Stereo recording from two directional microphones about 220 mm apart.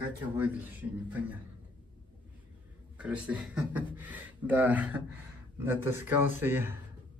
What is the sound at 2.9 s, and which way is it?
A man's voice, 5° right (ahead or behind).